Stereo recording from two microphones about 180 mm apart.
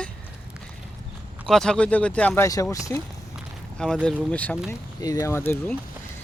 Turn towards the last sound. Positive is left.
turn(degrees=10)  # may be behind; listen again after turning